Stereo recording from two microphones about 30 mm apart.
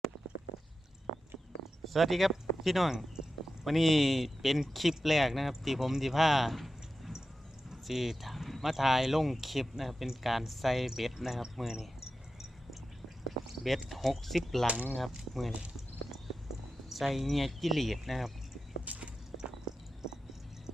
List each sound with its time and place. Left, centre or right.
1.8 s speech: centre
2.9 s a sound: centre
3.7 s speech: centre
7.9 s clip-clop: centre
8.6 s speech: centre
13.7 s speech: centre
14.7 s speech: right
14.9 s speech: centre
16.9 s speech: centre
18.9 s walk: right